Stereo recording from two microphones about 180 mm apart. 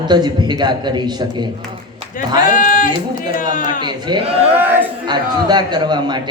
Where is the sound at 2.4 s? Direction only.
50° left (ahead or behind).